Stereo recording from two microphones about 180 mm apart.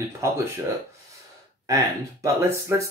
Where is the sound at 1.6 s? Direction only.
15° right (ahead or behind).